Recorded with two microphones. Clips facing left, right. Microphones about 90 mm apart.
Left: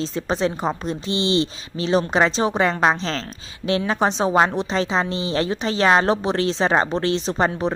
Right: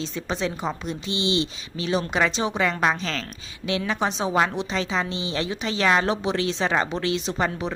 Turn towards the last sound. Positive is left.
turn(degrees=35)  # may be behind; listen again after turning